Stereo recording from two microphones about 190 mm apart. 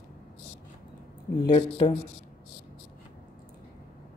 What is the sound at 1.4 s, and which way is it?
Speech, 25° left (ahead or behind).